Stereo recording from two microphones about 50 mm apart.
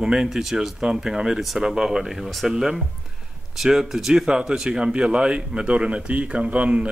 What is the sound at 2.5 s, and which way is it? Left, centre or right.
Speech, centre.